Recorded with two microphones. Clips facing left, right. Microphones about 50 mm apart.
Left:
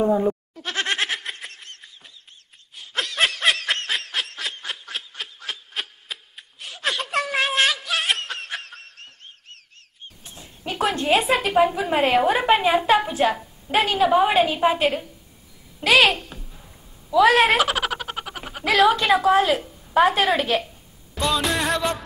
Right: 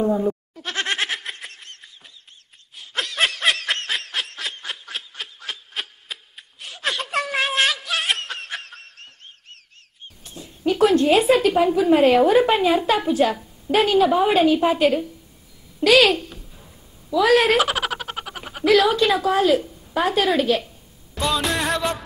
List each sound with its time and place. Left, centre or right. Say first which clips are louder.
0.0 s speech: left 1 dB; left
0.6 s goat: even; centre
2.7 s snicker: even; centre
10.2 s a child's voice: right 10 dB; centre
17.6 s a sound: right 1 dB; centre
18.6 s speech: right 1 dB; centre
21.1 s music: even; centre